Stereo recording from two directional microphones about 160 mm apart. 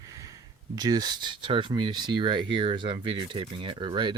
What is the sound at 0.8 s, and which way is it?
Speech, 25° right (ahead or behind).